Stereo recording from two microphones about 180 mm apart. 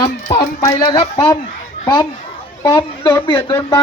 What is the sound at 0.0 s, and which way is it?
A child's voice, 20° left (ahead or behind).